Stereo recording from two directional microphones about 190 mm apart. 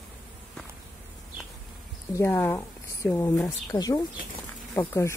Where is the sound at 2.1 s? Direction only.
15° left (ahead or behind).